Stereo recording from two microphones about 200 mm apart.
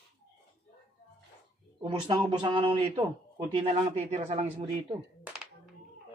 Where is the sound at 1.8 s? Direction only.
25° right (ahead or behind).